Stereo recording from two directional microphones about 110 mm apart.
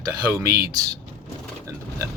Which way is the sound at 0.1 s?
30° right (ahead or behind).